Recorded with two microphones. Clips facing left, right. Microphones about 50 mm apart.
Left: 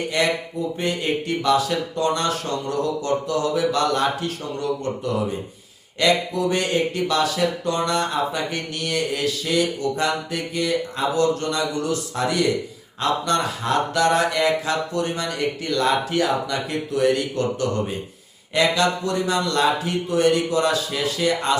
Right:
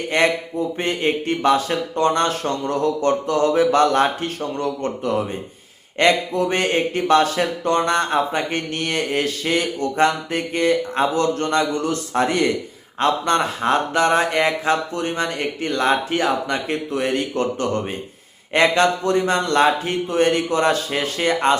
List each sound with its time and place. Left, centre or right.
0.1 s speech: right